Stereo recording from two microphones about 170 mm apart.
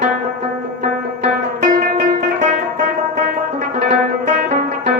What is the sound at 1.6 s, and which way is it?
Music, 50° right (ahead or behind).